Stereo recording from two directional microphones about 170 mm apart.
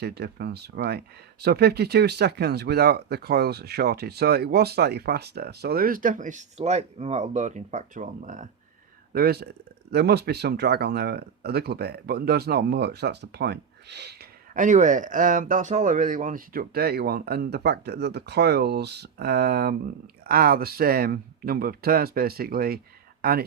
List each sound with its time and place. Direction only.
0.0 s speech: 70° right (ahead or behind); by 8.4 s 50° right (ahead or behind)
9.1 s speech: 65° right (ahead or behind)
14.5 s speech: 50° right (ahead or behind); by 23.4 s 65° right (ahead or behind)